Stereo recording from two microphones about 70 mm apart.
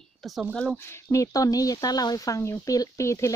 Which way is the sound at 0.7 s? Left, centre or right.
Left.